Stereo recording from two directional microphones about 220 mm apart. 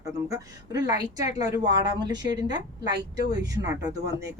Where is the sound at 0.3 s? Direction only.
15° right (ahead or behind).